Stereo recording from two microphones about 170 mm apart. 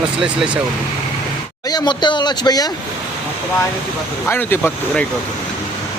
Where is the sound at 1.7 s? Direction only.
25° left (ahead or behind).